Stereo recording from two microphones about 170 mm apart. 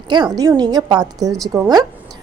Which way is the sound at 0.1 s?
25° right (ahead or behind).